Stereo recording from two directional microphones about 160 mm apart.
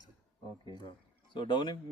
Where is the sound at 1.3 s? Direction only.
30° left (ahead or behind).